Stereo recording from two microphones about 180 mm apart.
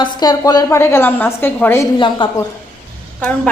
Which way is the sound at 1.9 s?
25° left (ahead or behind).